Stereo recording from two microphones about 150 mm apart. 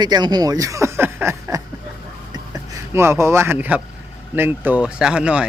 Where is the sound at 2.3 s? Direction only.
25° right (ahead or behind).